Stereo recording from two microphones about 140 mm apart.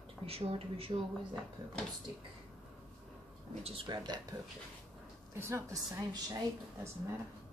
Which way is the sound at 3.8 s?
30° right (ahead or behind).